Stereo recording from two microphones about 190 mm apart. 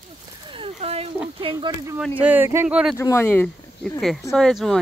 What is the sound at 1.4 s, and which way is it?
Speech, 25° right (ahead or behind).